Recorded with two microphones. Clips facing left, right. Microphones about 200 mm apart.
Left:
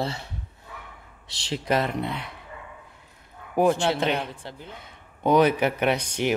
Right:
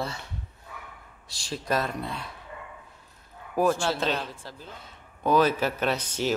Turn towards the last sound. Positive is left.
turn(degrees=15)  # may be behind; listen again after turning